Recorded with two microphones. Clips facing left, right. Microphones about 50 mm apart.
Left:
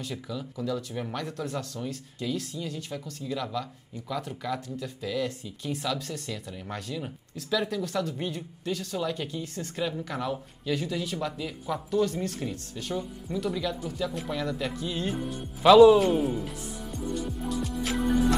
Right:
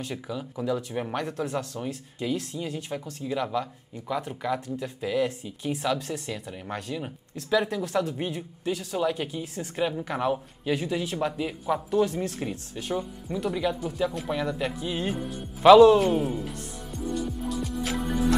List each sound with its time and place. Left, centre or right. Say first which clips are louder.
0.0 s speech: right 2 dB; centre
9.8 s speech: right 6 dB; right
15.8 s music: even; centre